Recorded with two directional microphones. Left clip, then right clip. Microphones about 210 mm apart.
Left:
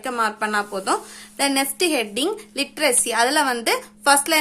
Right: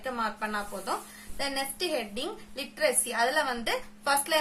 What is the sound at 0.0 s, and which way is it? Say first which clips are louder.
A woman's voice: left 9 dB; 35° left (ahead or behind).